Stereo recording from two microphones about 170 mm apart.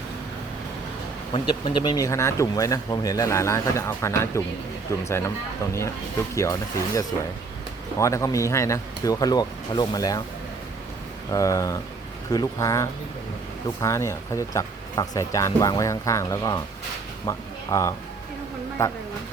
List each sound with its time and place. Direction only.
1.3 s speech: 30° left (ahead or behind)
6.3 s speech: 15° left (ahead or behind)
11.3 s speech: 20° left (ahead or behind)